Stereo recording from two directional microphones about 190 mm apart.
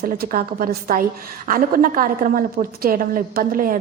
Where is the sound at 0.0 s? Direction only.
50° right (ahead or behind).